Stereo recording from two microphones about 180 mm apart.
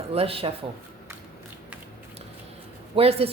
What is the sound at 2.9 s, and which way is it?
Speech, 35° right (ahead or behind).